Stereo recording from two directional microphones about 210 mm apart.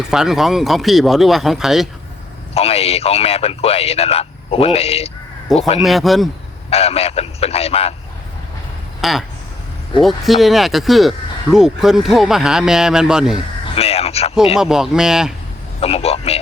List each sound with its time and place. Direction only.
0.0 s speech: 5° right (ahead or behind)
2.6 s speech: 30° left (ahead or behind)
5.8 s speech: centre (ahead or behind)
6.7 s speech: 30° left (ahead or behind)
9.0 s speech: centre (ahead or behind)
13.7 s speech: 30° left (ahead or behind)
14.5 s speech: centre (ahead or behind)
15.8 s speech: 30° left (ahead or behind)